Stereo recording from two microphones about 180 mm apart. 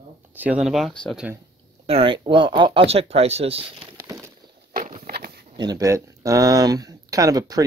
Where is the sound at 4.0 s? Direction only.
15° right (ahead or behind).